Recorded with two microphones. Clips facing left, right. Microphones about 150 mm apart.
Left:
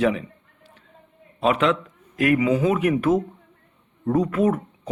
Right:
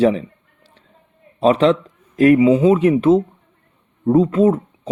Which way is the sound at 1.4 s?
30° right (ahead or behind).